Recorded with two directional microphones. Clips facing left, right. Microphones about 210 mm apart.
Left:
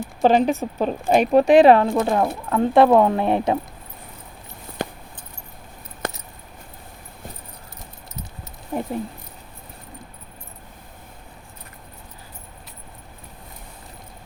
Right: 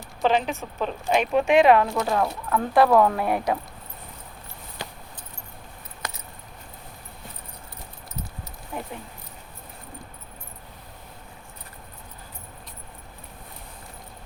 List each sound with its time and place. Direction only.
0.0 s speech: 45° left (ahead or behind); by 3.6 s 25° left (ahead or behind)
6.0 s keys jangling: 55° left (ahead or behind)
8.7 s a sound: 40° left (ahead or behind)